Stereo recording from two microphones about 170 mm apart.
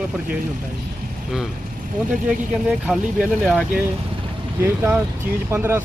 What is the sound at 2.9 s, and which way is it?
Speech, 5° right (ahead or behind).